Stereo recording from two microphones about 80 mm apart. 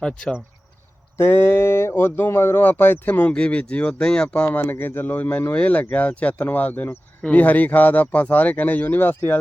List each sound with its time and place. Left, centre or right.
1.1 s speech: left; by 4.4 s centre
4.5 s speech: left